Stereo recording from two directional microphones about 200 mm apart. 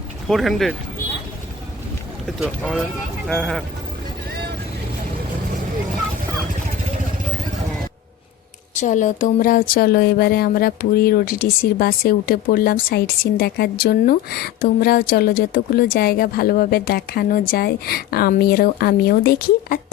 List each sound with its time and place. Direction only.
0.3 s speech: centre (ahead or behind)
2.4 s speech: centre (ahead or behind)
8.7 s speech: 40° left (ahead or behind)